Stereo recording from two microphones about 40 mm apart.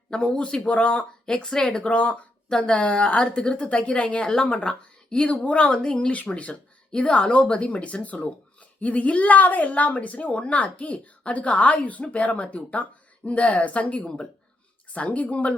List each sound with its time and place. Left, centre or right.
0.3 s speech: centre
1.6 s a woman's voice: left
5.3 s speech: left
6.1 s a woman's voice: left